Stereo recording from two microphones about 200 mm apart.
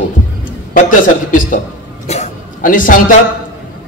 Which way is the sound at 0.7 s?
40° left (ahead or behind).